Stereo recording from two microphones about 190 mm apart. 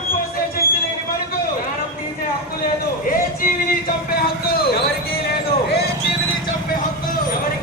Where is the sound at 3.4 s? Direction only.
50° left (ahead or behind).